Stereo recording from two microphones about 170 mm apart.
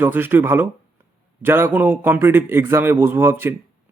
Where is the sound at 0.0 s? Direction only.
10° right (ahead or behind).